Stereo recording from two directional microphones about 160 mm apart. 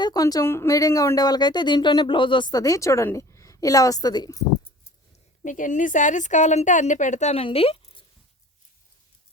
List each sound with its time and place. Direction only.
0.0 s speech: 25° left (ahead or behind)
5.4 s a woman's voice: 55° left (ahead or behind); by 8.0 s 35° left (ahead or behind)